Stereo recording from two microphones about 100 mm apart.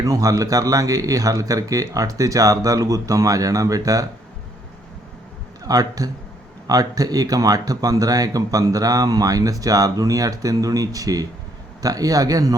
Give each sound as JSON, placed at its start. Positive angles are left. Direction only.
{"t": 0.0, "sound": "speech", "side_deg": -35}
{"t": 5.6, "sound": "speech", "side_deg": -40}